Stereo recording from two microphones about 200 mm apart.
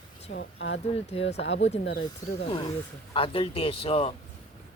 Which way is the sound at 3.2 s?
25° left (ahead or behind).